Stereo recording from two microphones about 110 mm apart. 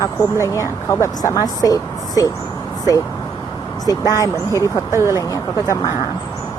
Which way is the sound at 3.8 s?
35° left (ahead or behind).